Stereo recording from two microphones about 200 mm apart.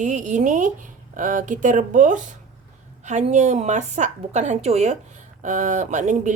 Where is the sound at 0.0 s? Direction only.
40° right (ahead or behind).